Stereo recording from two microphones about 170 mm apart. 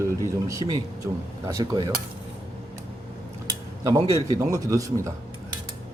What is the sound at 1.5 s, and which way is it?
Speech, 25° right (ahead or behind).